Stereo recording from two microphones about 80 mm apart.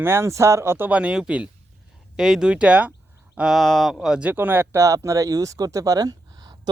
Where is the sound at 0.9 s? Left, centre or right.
Centre.